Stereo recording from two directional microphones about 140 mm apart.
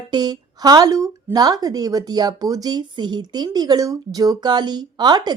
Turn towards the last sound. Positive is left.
turn(degrees=-30)  # may be behind; listen again after turning